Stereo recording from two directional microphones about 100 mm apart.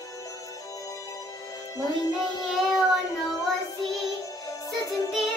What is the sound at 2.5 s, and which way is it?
Child singing, centre (ahead or behind).